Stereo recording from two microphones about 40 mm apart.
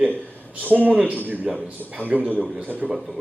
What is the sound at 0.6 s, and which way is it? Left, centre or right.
Speech, right.